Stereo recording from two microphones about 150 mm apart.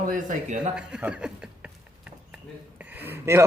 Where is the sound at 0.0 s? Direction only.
60° right (ahead or behind).